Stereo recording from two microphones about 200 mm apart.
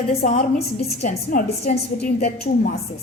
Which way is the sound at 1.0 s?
35° left (ahead or behind).